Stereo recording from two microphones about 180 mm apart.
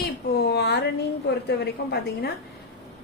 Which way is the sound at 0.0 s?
65° left (ahead or behind).